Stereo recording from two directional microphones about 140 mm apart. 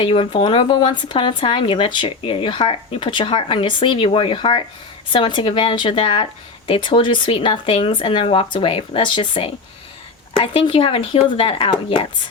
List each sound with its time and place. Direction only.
0.0 s speech: 40° left (ahead or behind)